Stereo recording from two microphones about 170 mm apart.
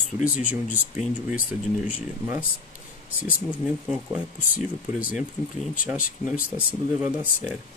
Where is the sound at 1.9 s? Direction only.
10° right (ahead or behind).